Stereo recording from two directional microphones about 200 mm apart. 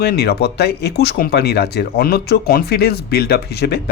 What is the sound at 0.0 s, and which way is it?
Speech, 55° left (ahead or behind).